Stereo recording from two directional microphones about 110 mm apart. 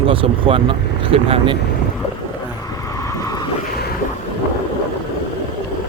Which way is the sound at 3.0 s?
30° left (ahead or behind).